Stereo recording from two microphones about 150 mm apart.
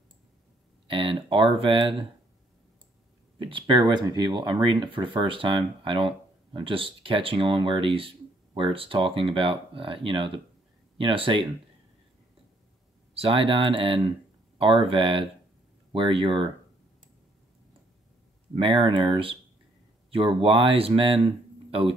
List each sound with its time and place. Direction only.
0.8 s speech: 35° right (ahead or behind)
3.3 s speech: 35° right (ahead or behind)
13.1 s speech: 40° right (ahead or behind)
18.6 s speech: 35° right (ahead or behind)